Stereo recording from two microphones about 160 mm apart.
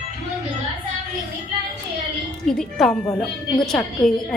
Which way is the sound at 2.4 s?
Centre (ahead or behind).